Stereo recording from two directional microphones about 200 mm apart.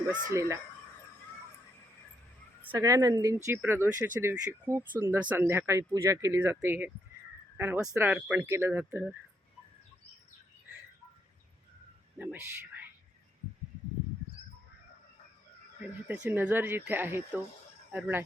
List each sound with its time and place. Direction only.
0.3 s speech: 15° right (ahead or behind)
2.6 s speech: 10° right (ahead or behind)
12.2 s speech: 10° right (ahead or behind)
16.3 s speech: 10° right (ahead or behind)